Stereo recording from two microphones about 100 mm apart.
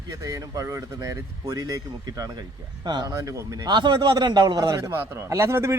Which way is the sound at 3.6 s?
50° right (ahead or behind).